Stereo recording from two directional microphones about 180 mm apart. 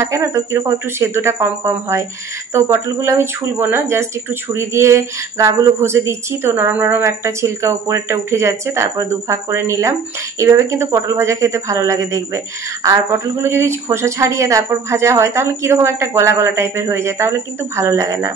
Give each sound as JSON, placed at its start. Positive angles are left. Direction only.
{"t": 0.0, "sound": "speech", "side_deg": -15}